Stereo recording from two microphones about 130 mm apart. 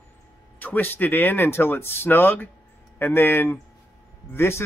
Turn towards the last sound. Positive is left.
turn(degrees=20)  # may be behind; listen again after turning